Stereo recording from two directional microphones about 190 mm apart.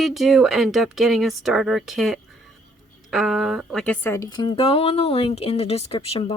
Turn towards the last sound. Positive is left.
turn(degrees=30)  # may be behind; listen again after turning